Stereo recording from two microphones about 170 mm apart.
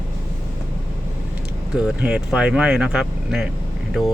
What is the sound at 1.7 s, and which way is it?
Speech, 5° right (ahead or behind).